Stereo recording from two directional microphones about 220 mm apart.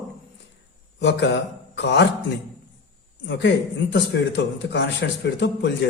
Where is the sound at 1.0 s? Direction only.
55° left (ahead or behind).